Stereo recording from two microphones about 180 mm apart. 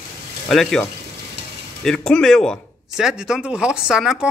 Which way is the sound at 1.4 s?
70° right (ahead or behind).